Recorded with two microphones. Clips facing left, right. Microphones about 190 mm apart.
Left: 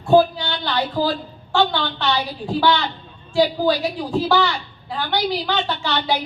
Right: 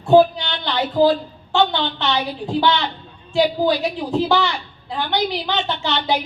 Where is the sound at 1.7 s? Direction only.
20° right (ahead or behind).